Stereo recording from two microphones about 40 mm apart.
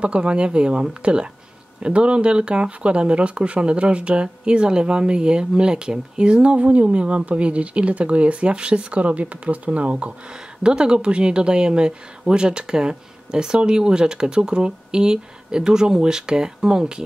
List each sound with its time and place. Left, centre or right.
0.0 s speech: right
10.3 s speech: right